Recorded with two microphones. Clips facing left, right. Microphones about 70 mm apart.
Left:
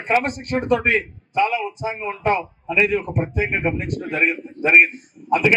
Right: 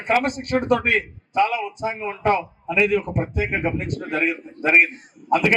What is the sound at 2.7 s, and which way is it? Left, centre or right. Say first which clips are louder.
A man's voice: even; left.